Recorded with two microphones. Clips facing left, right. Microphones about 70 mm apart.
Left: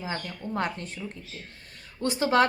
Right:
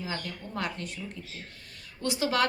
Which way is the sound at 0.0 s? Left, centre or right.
Left.